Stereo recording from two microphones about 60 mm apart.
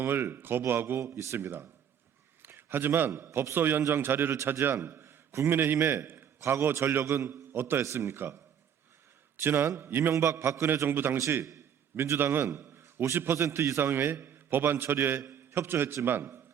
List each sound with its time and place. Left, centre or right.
0.0 s a man's voice: right
1.0 s speech: right
2.4 s a sound: right
3.5 s a man's voice: right
7.0 s a man's voice: right
9.4 s a man's voice: right
12.5 s a man's voice: right
13.3 s speech: right
13.8 s a man's voice: right